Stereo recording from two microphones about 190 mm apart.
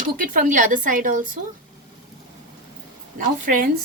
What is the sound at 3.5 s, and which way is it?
Speech, 45° right (ahead or behind).